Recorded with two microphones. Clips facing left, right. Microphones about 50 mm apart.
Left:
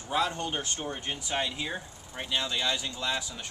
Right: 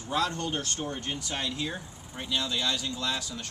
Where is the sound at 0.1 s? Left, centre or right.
Centre.